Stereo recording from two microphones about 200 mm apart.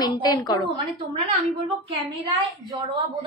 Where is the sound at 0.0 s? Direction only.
20° left (ahead or behind).